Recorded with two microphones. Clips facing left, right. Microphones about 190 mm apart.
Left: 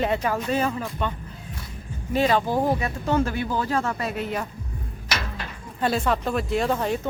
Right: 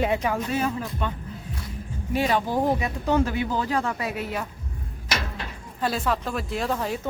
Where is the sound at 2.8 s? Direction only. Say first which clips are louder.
Even; 15° right (ahead or behind).